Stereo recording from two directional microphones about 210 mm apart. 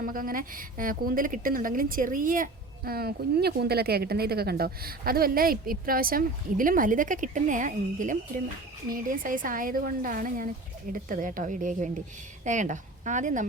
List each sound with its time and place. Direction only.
0.0 s a woman's voice: 40° right (ahead or behind)